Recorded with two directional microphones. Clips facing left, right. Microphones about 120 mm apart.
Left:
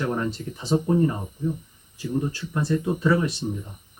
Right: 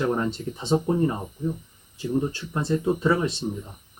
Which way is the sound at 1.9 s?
25° right (ahead or behind).